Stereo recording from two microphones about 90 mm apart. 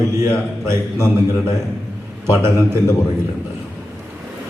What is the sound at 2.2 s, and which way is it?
Speech, 30° right (ahead or behind).